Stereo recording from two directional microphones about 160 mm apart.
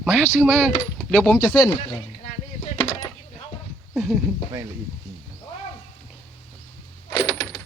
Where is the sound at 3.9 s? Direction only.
Centre (ahead or behind).